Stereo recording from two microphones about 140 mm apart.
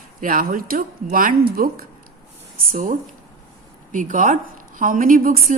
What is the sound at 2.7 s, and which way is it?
A woman's voice, 65° right (ahead or behind).